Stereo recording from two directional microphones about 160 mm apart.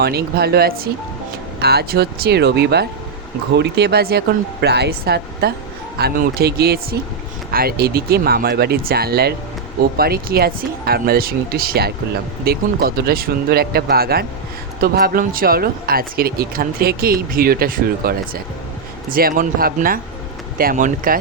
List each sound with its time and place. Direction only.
0.0 s a woman's voice: 80° right
7.5 s speech: 70° right (ahead or behind)